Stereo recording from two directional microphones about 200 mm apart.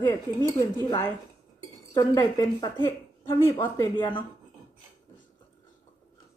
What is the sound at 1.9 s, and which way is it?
A woman's voice, 15° left (ahead or behind).